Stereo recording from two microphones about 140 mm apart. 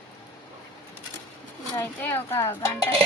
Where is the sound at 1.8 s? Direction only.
15° left (ahead or behind).